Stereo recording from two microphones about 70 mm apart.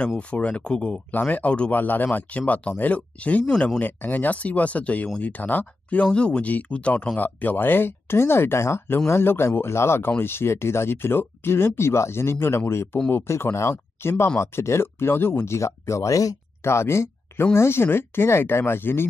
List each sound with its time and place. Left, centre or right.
0.2 s speech: centre
3.4 s speech: centre
3.8 s speech: left
16.6 s speech: left